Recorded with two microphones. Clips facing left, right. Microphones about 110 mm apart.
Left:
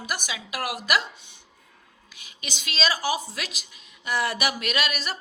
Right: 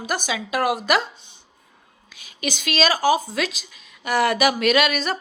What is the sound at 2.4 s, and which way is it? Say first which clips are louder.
Speech: right 7 dB; 90° right.